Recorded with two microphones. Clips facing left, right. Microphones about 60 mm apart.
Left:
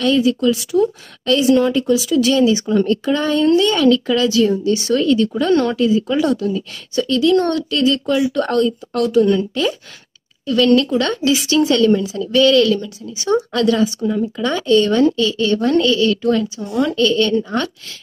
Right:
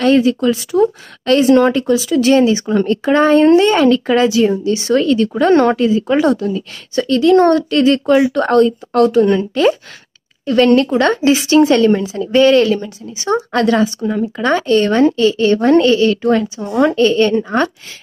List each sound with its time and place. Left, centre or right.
0.0 s a woman's voice: right
4.9 s speech: right
16.9 s a woman's voice: right